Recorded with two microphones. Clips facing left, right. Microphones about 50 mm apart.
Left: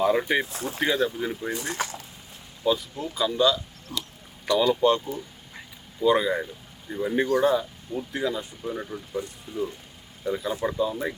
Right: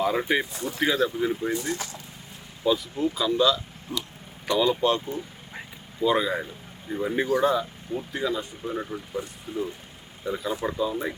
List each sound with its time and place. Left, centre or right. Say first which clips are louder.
0.0 s speech: left 2 dB; centre
0.5 s speech: even; left
0.8 s speech: right 1 dB; centre
1.6 s speech: left 1 dB; left
2.6 s speech: right 2 dB; centre
3.9 s speech: right 2 dB; right
4.8 s speech: left 2 dB; centre
8.7 s speech: right 1 dB; centre